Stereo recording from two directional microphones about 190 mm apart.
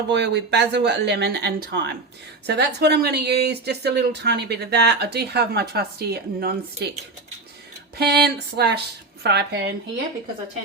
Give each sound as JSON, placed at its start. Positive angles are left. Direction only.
{"t": 0.1, "sound": "speech", "side_deg": -60}
{"t": 7.9, "sound": "speech", "side_deg": -55}